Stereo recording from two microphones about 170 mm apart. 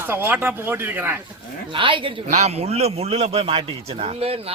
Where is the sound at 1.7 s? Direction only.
30° right (ahead or behind).